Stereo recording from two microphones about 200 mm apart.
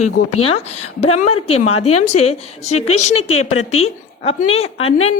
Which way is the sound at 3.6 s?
30° left (ahead or behind).